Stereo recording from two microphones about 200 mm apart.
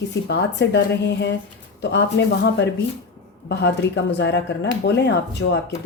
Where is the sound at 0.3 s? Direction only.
60° left (ahead or behind).